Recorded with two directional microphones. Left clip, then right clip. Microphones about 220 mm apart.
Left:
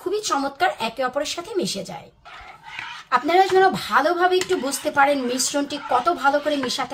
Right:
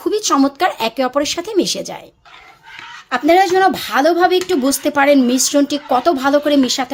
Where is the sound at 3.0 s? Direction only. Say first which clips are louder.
Right 5 dB; 50° right (ahead or behind).